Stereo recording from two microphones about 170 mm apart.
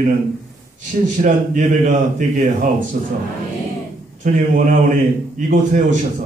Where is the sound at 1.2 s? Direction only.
50° right (ahead or behind).